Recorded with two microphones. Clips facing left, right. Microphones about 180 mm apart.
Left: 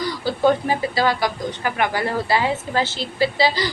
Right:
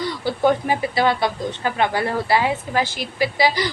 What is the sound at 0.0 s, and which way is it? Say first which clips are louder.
A woman's voice: left 1 dB; 25° right (ahead or behind).